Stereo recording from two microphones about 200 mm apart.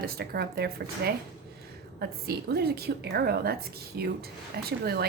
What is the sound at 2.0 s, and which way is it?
A woman's voice, 50° right (ahead or behind).